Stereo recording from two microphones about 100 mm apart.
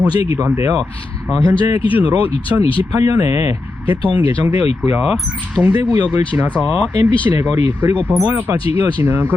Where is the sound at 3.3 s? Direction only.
90° left; by 4.1 s 60° left (ahead or behind).